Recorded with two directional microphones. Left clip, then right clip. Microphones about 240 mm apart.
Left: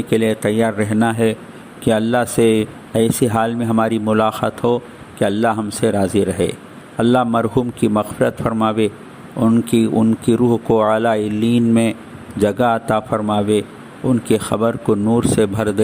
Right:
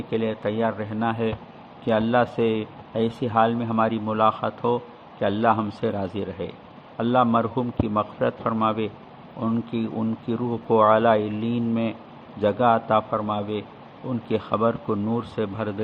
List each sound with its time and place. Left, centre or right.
0.1 s speech: left